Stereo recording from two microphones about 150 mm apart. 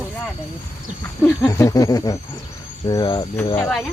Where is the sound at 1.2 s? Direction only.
15° left (ahead or behind).